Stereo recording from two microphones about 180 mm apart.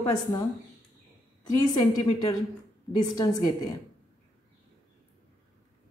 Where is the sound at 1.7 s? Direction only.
25° left (ahead or behind).